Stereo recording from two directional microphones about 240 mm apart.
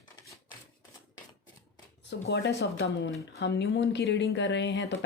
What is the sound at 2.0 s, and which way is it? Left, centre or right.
A woman's voice, left.